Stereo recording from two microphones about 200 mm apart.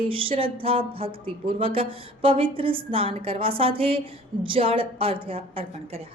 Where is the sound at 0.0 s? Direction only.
25° right (ahead or behind).